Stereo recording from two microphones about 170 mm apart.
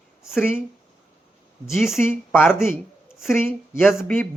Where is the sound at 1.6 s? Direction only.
Centre (ahead or behind).